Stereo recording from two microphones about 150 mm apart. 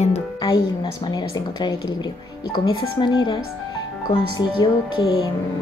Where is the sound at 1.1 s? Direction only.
25° left (ahead or behind).